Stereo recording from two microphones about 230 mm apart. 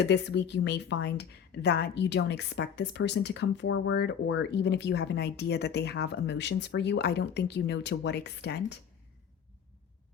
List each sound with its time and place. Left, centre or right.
0.0 s speech: left